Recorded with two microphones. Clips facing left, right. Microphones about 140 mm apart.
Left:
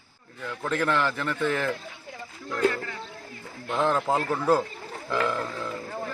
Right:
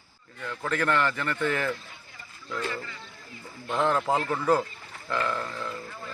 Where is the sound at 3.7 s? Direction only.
Centre (ahead or behind).